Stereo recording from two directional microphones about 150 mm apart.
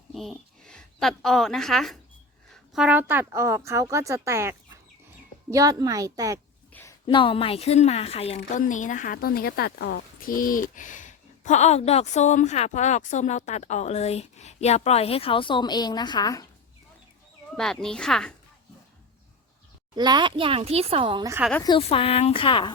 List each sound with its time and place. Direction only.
0.1 s a woman's voice: centre (ahead or behind); by 6.4 s 25° right (ahead or behind)
6.7 s a sound: 10° left (ahead or behind)
7.1 s speech: 35° left (ahead or behind)
8.4 s speech: 60° left (ahead or behind); by 16.5 s 25° left (ahead or behind)
17.6 s speech: 5° left (ahead or behind)
20.0 s speech: 30° right (ahead or behind)
21.8 s speech: 40° left (ahead or behind)